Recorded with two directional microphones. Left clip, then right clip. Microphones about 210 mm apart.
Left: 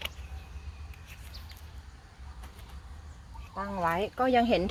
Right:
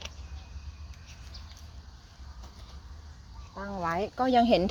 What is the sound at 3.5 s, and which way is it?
Speech, 10° right (ahead or behind).